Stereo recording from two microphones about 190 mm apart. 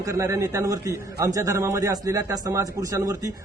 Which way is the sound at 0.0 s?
15° right (ahead or behind).